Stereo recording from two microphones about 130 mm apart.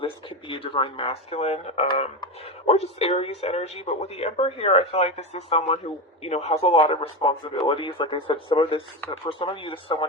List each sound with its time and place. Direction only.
0.0 s speech: 40° left (ahead or behind)